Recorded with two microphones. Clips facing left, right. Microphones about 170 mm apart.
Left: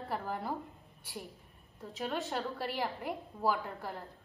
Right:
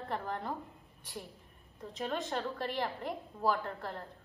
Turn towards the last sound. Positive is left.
turn(degrees=5)  # may be behind; listen again after turning